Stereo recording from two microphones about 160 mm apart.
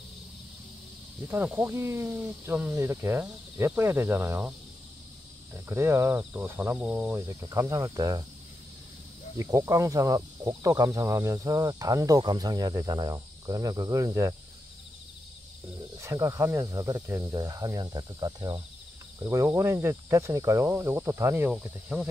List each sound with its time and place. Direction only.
1.2 s speech: 15° right (ahead or behind)
9.4 s speech: 20° right (ahead or behind)
16.0 s speech: 20° right (ahead or behind)